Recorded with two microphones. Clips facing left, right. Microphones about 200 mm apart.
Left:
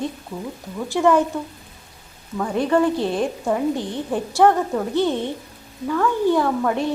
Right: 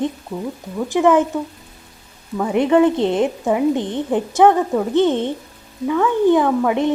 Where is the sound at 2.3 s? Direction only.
15° right (ahead or behind).